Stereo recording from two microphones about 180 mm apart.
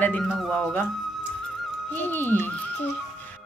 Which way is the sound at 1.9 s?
10° left (ahead or behind).